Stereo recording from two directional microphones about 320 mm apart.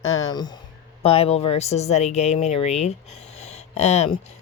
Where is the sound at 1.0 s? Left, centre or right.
Centre.